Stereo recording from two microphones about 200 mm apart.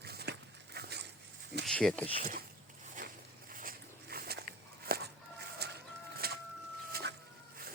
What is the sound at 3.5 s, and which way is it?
Walk, 45° right (ahead or behind).